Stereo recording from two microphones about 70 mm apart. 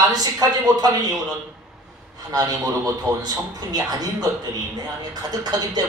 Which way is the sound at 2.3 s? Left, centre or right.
Right.